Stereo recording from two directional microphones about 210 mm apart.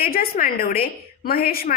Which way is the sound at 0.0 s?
45° left (ahead or behind).